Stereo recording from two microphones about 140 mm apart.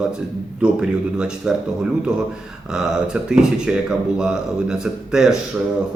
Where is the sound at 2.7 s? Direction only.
5° right (ahead or behind).